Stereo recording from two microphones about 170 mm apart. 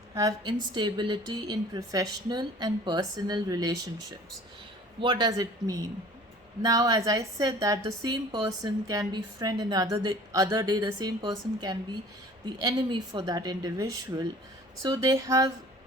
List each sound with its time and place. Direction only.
0.1 s a woman's voice: 20° right (ahead or behind)
4.9 s a woman's voice: 25° right (ahead or behind)